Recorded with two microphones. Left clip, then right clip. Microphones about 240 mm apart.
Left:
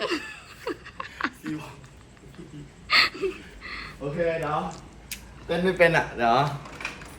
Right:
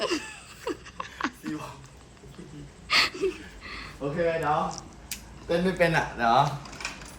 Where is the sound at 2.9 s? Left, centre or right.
Centre.